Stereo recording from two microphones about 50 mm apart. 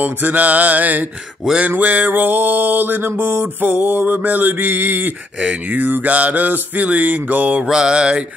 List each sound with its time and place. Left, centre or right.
0.0 s music: right
1.4 s mantra: centre
1.8 s music: right
5.4 s music: right
7.6 s mantra: centre